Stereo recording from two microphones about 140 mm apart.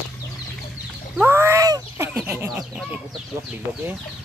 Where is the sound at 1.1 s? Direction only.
15° right (ahead or behind).